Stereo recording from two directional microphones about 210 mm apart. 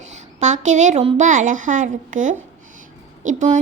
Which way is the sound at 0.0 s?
35° right (ahead or behind).